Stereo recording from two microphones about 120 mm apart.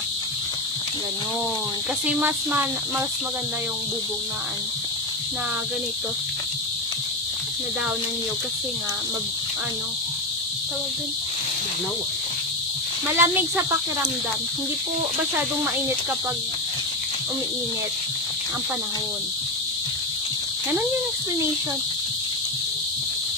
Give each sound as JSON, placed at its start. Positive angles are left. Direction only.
{"t": 2.0, "sound": "speech", "side_deg": -15}
{"t": 13.1, "sound": "speech", "side_deg": -20}